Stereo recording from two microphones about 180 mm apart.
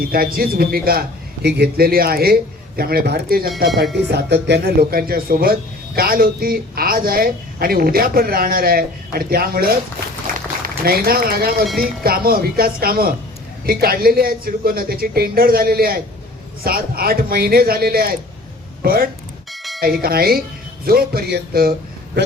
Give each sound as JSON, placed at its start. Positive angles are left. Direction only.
{"t": 0.1, "sound": "a woman's voice", "side_deg": -55}
{"t": 4.1, "sound": "a woman's voice", "side_deg": -70}
{"t": 10.8, "sound": "a woman's voice", "side_deg": -55}
{"t": 19.5, "sound": "bell", "side_deg": 0}
{"t": 20.0, "sound": "a woman's voice", "side_deg": -55}